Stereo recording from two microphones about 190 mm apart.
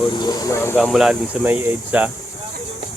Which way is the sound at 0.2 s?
20° left (ahead or behind).